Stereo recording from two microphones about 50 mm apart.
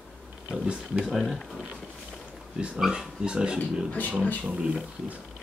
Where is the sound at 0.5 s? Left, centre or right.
Right.